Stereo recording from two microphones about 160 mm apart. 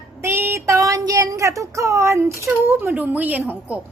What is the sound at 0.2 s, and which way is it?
Child singing, 15° right (ahead or behind).